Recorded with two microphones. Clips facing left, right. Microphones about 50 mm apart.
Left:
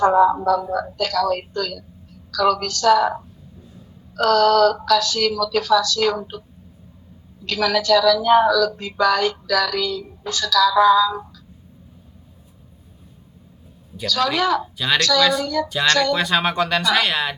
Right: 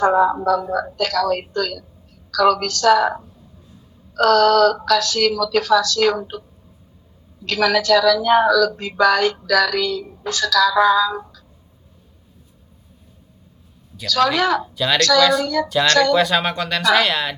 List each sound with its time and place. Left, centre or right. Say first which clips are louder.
0.9 s a woman's voice: right 1 dB; right
4.1 s a woman's voice: right 2 dB; right
7.4 s a woman's voice: right 2 dB; right
14.1 s a woman's voice: right 2 dB; right
14.8 s speech: right 1 dB; centre
15.0 s a woman's voice: right 4 dB; right
15.7 s speech: right 4 dB; centre